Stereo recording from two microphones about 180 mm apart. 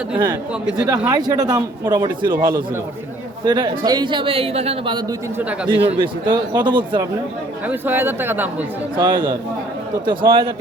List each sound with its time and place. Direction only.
0.6 s speech: 5° right (ahead or behind)
0.9 s a man's voice: 20° right (ahead or behind)
3.4 s a man's voice: 25° right (ahead or behind)
7.7 s speech: 10° right (ahead or behind)
9.0 s a man's voice: 25° right (ahead or behind)